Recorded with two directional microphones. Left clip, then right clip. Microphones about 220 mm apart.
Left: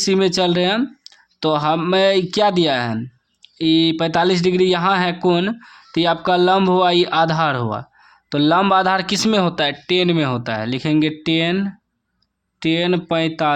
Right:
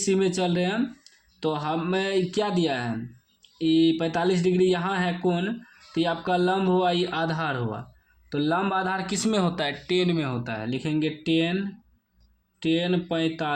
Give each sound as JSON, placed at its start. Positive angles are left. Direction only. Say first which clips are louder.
{"t": 0.0, "sound": "speech", "louder": "left 8 dB", "side_deg": 40}